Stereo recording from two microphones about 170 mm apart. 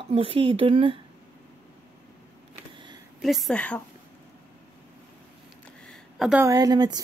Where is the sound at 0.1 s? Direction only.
30° right (ahead or behind).